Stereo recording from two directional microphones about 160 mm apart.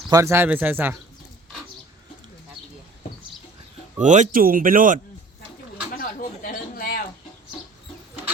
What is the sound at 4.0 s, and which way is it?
Speech, 50° right (ahead or behind).